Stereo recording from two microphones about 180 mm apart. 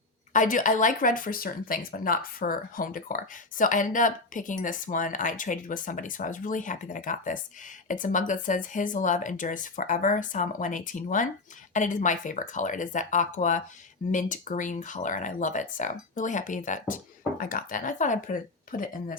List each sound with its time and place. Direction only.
0.3 s speech: 45° left (ahead or behind)